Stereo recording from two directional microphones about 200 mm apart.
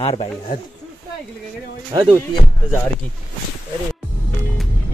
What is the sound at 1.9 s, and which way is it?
Speech, 20° right (ahead or behind).